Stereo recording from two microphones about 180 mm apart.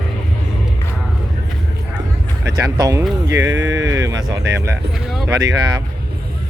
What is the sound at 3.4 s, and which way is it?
Speech, 90° right.